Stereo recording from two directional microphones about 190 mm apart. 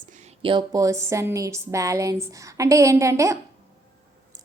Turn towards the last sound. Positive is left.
turn(degrees=-15)  # may be behind; listen again after turning